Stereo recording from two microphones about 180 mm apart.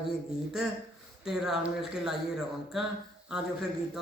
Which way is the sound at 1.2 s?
5° right (ahead or behind).